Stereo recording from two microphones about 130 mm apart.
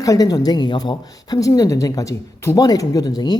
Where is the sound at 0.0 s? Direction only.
30° left (ahead or behind).